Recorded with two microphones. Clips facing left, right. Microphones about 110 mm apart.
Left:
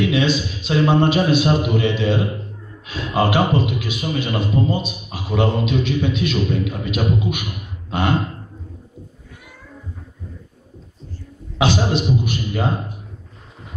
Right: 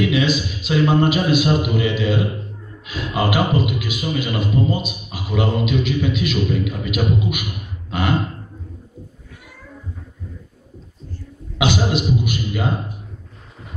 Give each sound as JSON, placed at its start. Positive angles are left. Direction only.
{"t": 0.0, "sound": "a man's voice", "side_deg": 30}
{"t": 11.5, "sound": "a man's voice", "side_deg": 35}